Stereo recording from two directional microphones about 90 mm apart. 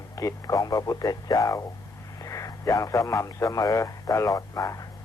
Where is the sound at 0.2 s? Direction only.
40° left (ahead or behind).